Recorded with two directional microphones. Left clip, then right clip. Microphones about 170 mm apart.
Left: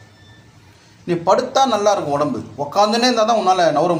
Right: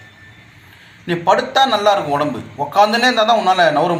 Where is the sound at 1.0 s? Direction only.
20° left (ahead or behind).